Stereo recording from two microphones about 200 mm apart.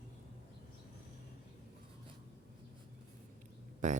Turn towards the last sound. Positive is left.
turn(degrees=-40)  # may be behind; listen again after turning